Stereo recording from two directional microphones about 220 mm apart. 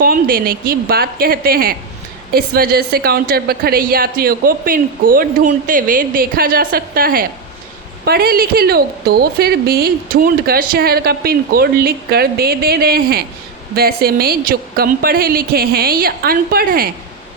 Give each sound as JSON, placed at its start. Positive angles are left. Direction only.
{"t": 0.0, "sound": "a woman's voice", "side_deg": -40}